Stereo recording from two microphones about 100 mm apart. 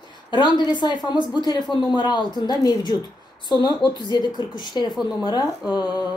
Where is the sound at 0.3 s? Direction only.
50° left (ahead or behind).